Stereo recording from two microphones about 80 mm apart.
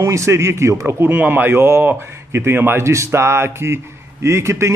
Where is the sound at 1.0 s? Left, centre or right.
Right.